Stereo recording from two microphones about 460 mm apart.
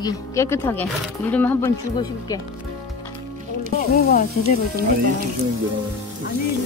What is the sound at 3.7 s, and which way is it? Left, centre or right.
Speech, centre.